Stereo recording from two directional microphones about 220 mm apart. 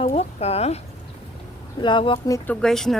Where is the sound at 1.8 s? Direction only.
20° left (ahead or behind).